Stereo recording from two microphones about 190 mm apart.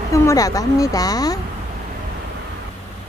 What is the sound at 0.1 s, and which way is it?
Speech, 15° left (ahead or behind).